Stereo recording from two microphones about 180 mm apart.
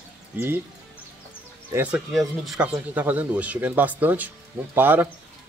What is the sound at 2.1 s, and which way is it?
Speech, 5° right (ahead or behind).